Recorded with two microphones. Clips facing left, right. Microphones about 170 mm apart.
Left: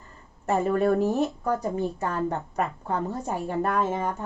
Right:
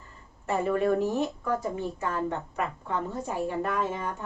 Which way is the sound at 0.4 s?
45° left (ahead or behind).